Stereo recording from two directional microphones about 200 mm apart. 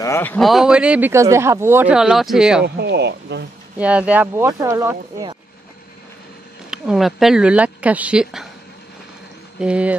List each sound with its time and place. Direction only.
0.0 s speech: 10° left (ahead or behind)
2.6 s speech: 55° right (ahead or behind)
3.7 s speech: 5° right (ahead or behind)
6.7 s speech: centre (ahead or behind)
9.6 s speech: 5° right (ahead or behind)